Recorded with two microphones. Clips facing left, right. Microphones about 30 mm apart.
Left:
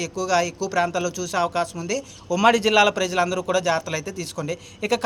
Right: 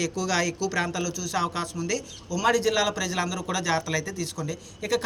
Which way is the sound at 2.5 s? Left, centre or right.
Left.